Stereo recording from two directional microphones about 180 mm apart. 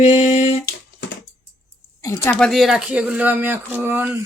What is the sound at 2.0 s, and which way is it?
Speech, 15° left (ahead or behind).